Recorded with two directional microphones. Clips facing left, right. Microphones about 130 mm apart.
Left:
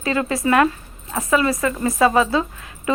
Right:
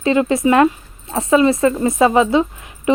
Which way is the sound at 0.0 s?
25° right (ahead or behind).